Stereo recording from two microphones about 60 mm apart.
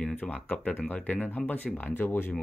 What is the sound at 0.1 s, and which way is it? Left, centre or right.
Speech, left.